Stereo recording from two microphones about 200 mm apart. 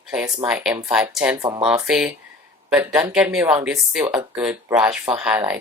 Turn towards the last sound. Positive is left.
turn(degrees=-5)  # may be behind; listen again after turning